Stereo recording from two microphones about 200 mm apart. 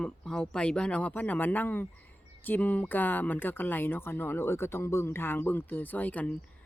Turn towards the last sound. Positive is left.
turn(degrees=5)  # may be behind; listen again after turning